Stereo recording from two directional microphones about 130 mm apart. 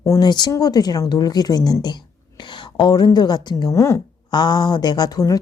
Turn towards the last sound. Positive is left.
turn(degrees=25)  # may be behind; listen again after turning